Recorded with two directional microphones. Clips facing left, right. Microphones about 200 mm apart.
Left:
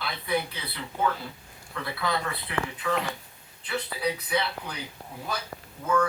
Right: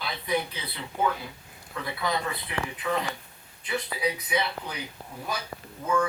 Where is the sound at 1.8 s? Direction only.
15° right (ahead or behind).